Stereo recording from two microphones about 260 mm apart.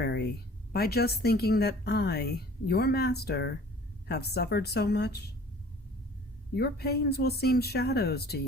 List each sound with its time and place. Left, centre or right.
0.7 s a woman's voice: left
6.6 s a woman's voice: left